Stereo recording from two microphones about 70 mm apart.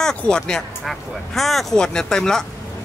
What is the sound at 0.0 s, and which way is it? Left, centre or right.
Speech, centre.